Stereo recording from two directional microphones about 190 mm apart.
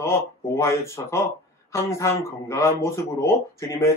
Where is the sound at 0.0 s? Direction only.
15° left (ahead or behind).